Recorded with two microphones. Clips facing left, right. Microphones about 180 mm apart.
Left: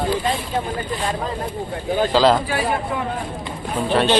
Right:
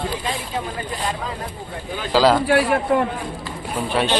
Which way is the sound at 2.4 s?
70° right (ahead or behind).